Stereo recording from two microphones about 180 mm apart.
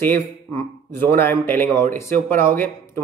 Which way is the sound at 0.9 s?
10° left (ahead or behind).